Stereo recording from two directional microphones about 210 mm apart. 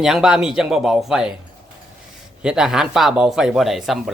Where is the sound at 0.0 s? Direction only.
5° right (ahead or behind).